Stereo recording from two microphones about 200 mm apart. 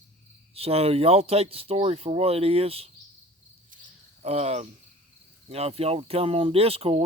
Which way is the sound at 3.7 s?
40° right (ahead or behind).